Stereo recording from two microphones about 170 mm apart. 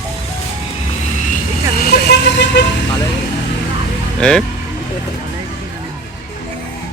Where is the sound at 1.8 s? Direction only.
70° left (ahead or behind); by 2.5 s 90° left.